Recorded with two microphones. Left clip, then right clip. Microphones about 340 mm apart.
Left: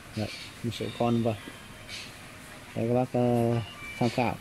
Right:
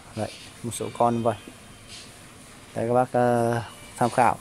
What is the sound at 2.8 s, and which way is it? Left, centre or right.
Speech, right.